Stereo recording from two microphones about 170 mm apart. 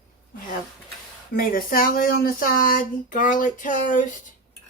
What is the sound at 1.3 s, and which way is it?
Speech, 60° left (ahead or behind).